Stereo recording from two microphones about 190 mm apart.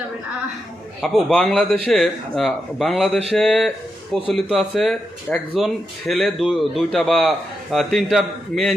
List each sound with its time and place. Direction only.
1.0 s speech: centre (ahead or behind)